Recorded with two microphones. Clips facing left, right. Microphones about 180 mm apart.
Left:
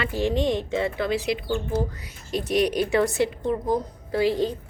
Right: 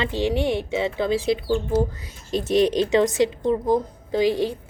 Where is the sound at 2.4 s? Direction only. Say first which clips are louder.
Right 3 dB; 25° right (ahead or behind).